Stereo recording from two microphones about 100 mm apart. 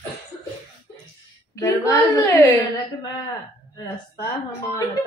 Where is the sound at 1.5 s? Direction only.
35° left (ahead or behind).